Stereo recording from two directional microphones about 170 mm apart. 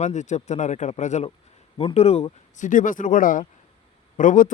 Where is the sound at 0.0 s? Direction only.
45° left (ahead or behind).